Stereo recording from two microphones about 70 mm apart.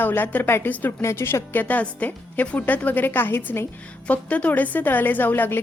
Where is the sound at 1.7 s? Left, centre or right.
Left.